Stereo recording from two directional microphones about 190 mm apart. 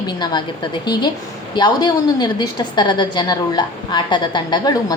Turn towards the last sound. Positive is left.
turn(degrees=20)  # may be behind; listen again after turning